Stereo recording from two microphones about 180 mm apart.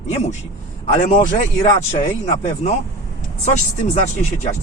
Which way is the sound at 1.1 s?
40° left (ahead or behind).